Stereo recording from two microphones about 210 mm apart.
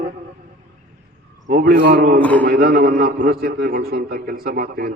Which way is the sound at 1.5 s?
45° right (ahead or behind).